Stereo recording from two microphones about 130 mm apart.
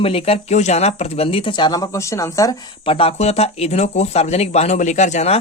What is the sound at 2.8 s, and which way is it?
Speech, 45° left (ahead or behind).